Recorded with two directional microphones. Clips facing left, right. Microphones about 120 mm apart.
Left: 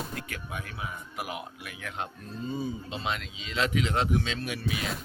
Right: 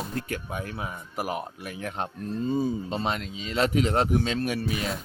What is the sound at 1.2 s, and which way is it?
Speech, 40° right (ahead or behind).